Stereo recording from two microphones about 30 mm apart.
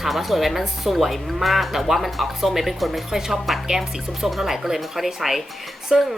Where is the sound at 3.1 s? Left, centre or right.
Centre.